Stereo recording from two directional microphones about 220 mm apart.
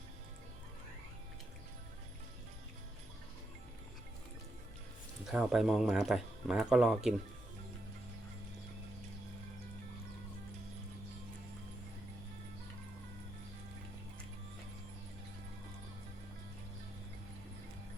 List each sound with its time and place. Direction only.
5.2 s speech: 5° right (ahead or behind)